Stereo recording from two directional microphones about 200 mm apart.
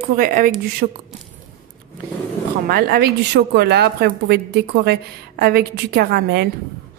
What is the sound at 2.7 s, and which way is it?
A woman's voice, 50° right (ahead or behind).